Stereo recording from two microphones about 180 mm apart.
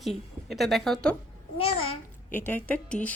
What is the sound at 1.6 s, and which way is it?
Babbling, 35° left (ahead or behind).